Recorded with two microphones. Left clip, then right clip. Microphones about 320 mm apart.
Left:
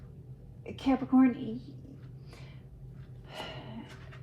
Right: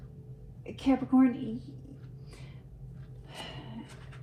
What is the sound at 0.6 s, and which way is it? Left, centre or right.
Speech, left.